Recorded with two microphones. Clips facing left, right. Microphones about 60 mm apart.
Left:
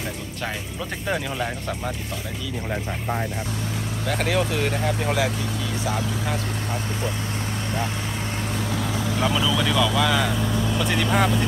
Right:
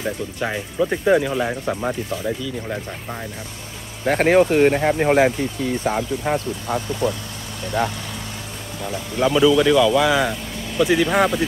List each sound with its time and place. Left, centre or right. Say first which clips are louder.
0.4 s speech: right 9 dB; centre
1.8 s speech: right 6 dB; right
4.0 s speech: right 9 dB; right
9.2 s speech: right 9 dB; centre